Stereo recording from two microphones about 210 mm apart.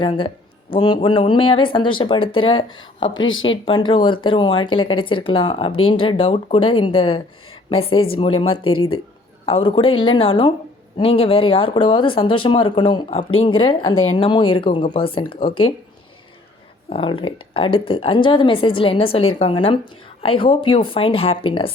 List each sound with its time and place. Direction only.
0.0 s speech: 25° left (ahead or behind)
3.2 s speech: 65° left (ahead or behind)
3.4 s a woman's voice: 25° left (ahead or behind)
16.9 s speech: 25° left (ahead or behind)